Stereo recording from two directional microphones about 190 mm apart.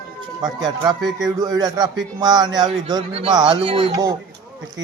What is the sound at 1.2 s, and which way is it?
Speech, 20° right (ahead or behind).